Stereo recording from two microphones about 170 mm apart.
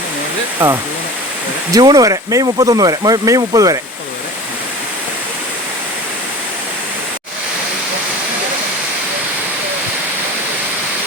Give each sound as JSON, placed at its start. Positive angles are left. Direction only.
{"t": 0.6, "sound": "speech", "side_deg": -10}